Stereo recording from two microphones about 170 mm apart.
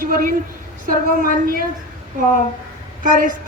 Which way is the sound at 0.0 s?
55° right (ahead or behind).